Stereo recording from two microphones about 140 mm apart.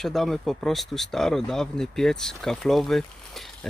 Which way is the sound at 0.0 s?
Centre (ahead or behind).